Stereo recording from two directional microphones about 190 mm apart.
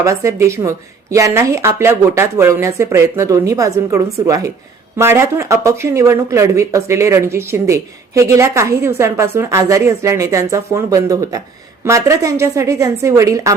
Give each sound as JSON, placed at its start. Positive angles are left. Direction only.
{"t": 0.0, "sound": "speech", "side_deg": -15}